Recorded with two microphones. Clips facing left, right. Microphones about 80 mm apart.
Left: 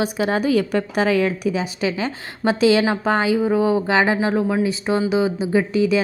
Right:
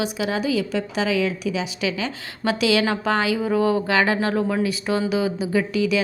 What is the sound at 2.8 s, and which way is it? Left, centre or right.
Speech, left.